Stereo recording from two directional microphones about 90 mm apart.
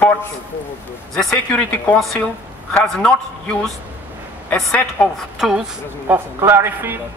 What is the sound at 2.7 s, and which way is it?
Speech, 10° left (ahead or behind).